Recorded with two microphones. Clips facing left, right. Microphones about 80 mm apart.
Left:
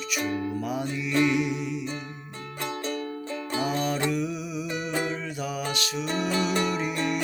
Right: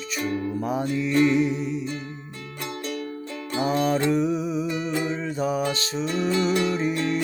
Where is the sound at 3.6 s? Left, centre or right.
Right.